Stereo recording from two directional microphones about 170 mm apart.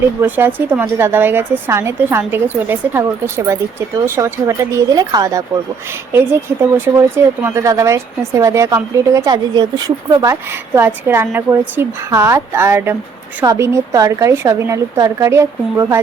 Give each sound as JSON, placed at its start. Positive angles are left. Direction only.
{"t": 0.2, "sound": "a woman's voice", "side_deg": -10}